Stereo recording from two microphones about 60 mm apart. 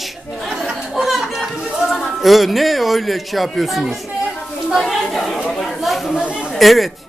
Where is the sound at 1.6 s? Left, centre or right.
Centre.